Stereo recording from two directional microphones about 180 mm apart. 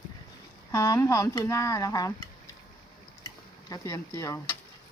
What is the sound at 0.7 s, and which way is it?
Speech, 20° left (ahead or behind).